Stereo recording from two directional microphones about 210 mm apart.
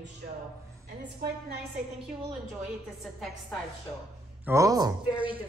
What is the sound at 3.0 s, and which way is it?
Speech, centre (ahead or behind).